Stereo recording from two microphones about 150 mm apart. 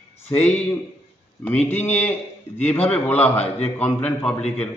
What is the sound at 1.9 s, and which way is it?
A man's voice, 10° left (ahead or behind).